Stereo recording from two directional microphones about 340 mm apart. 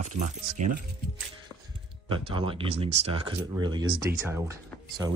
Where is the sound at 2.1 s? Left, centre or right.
Centre.